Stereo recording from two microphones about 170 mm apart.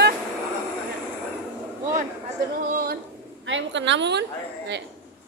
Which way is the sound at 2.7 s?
60° right (ahead or behind).